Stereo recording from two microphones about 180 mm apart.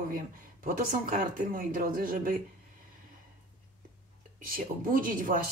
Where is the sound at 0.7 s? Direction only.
50° right (ahead or behind).